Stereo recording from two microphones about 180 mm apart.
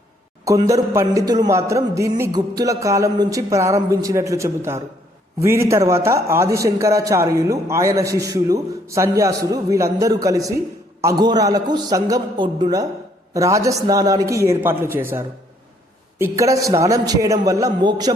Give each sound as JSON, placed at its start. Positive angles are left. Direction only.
{"t": 0.4, "sound": "a man's voice", "side_deg": -20}